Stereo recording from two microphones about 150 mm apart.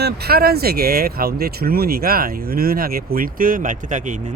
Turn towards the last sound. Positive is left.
turn(degrees=-55)  # may be behind; listen again after turning